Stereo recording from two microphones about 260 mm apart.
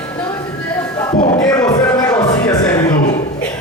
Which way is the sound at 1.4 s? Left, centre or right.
Centre.